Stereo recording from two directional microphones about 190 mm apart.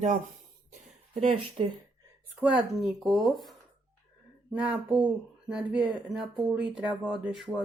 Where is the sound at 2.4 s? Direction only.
5° right (ahead or behind).